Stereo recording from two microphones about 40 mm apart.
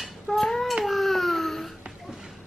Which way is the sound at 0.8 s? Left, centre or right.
Centre.